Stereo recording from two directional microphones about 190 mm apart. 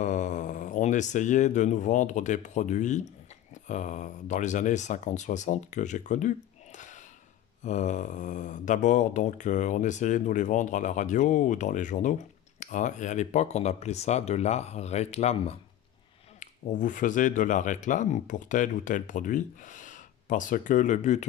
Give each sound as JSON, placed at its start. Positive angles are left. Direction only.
{"t": 0.0, "sound": "speech", "side_deg": 40}